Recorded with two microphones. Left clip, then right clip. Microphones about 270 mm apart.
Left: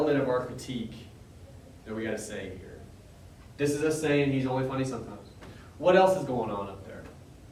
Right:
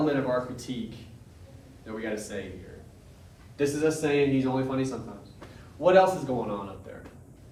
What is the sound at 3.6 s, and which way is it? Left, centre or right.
A man's voice, centre.